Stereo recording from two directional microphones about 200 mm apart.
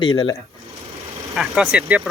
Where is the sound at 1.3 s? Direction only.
Centre (ahead or behind).